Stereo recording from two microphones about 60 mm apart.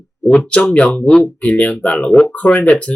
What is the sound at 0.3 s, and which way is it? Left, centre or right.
Speech, left.